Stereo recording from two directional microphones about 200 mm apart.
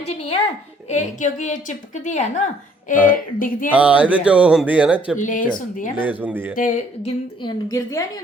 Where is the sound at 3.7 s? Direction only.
5° right (ahead or behind).